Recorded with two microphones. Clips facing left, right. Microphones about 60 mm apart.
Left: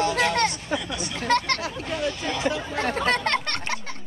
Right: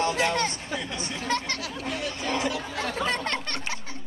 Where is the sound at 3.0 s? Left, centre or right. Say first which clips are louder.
Left 4 dB; left.